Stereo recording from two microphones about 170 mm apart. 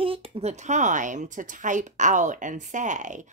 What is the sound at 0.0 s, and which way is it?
Speech, 35° right (ahead or behind).